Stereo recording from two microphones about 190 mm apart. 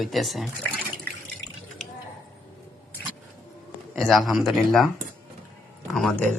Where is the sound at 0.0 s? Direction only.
Centre (ahead or behind).